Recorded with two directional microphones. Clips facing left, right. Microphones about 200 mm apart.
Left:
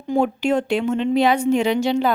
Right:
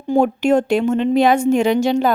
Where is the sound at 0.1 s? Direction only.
45° right (ahead or behind).